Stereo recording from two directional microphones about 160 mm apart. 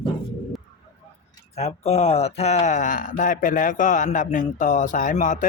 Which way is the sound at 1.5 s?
40° left (ahead or behind).